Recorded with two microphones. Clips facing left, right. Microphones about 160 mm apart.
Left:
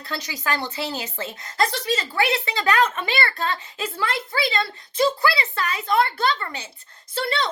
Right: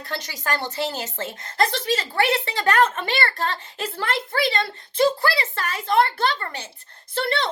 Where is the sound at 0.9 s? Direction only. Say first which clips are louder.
Right 1 dB; 45° right (ahead or behind).